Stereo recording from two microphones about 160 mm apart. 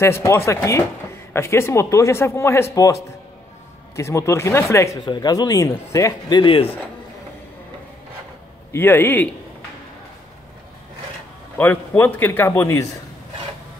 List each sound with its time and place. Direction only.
0.0 s speech: 15° left (ahead or behind); by 6.7 s 30° left (ahead or behind)
8.7 s speech: 15° left (ahead or behind)
11.5 s speech: 10° left (ahead or behind)